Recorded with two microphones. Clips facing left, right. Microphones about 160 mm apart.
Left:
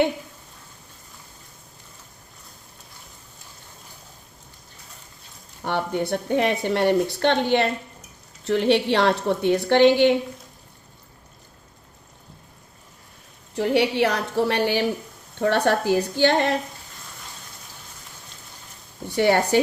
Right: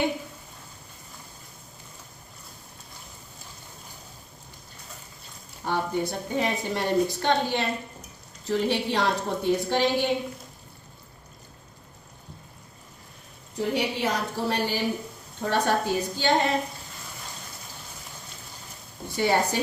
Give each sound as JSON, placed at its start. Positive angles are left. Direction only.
{"t": 5.6, "sound": "a woman's voice", "side_deg": 65}
{"t": 13.6, "sound": "a woman's voice", "side_deg": 75}
{"t": 19.0, "sound": "speech", "side_deg": 65}